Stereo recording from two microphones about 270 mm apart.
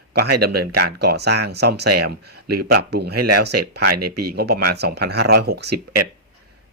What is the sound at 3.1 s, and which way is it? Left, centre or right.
Speech, right.